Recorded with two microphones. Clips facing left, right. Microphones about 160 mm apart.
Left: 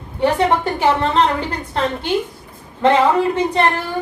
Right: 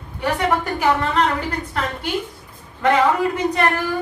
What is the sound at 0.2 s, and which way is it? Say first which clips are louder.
A woman's voice: left 4 dB; 30° left (ahead or behind).